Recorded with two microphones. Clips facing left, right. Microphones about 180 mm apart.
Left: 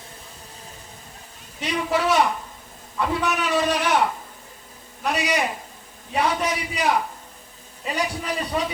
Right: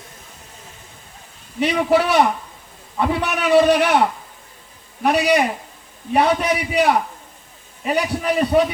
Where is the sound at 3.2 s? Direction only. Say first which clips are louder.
Right 9 dB; 65° right (ahead or behind).